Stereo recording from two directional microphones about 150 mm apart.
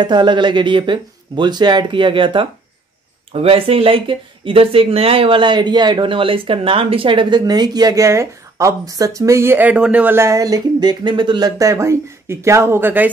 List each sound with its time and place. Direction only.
0.0 s speech: 30° right (ahead or behind); by 13.1 s 15° right (ahead or behind)